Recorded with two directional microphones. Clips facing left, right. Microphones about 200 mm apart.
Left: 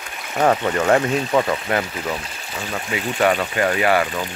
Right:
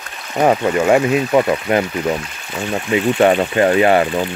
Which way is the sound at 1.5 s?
25° right (ahead or behind).